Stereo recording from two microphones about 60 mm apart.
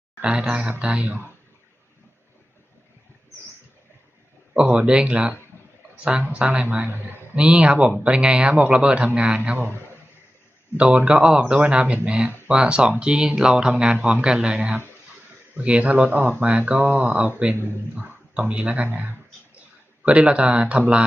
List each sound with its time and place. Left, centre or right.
0.2 s speech: centre
4.5 s speech: right
10.8 s speech: centre
20.1 s speech: centre